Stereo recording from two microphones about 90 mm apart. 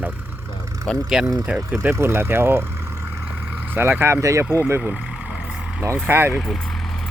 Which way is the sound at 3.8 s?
25° right (ahead or behind).